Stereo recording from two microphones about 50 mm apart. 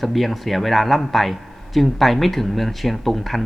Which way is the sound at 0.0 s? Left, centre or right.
Centre.